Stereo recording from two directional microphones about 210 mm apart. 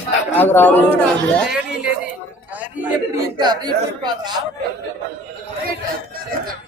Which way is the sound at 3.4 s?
20° right (ahead or behind).